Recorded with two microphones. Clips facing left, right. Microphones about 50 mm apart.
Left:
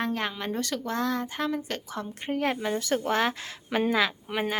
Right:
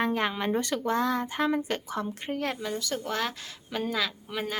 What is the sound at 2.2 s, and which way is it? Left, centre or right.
Speech, centre.